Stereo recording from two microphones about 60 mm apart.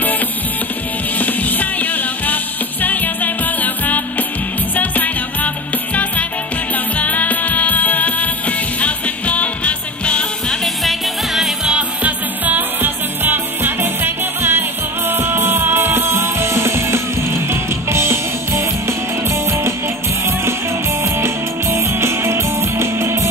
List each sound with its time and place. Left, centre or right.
1.1 s music: left
7.0 s music: left
10.6 s music: centre
11.7 s music: right
21.0 s music: right